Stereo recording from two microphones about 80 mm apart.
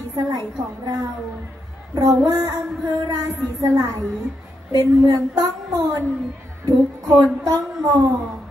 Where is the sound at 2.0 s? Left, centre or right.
Right.